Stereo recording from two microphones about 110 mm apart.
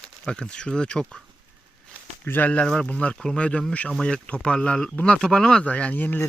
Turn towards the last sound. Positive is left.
turn(degrees=15)  # may be behind; listen again after turning